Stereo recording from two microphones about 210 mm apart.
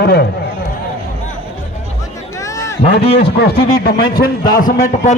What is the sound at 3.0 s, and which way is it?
A man's voice, 50° left (ahead or behind).